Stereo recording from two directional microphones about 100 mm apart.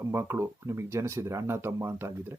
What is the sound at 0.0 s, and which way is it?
Speech, 25° right (ahead or behind).